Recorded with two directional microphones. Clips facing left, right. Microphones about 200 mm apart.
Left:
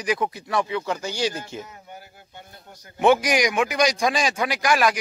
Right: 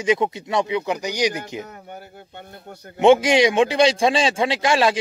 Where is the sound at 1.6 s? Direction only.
60° right (ahead or behind).